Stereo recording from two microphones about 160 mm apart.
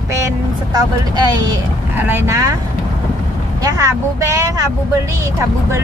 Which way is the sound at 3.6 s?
20° right (ahead or behind).